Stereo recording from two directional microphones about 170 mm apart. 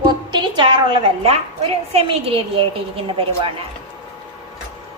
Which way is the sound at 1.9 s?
35° right (ahead or behind).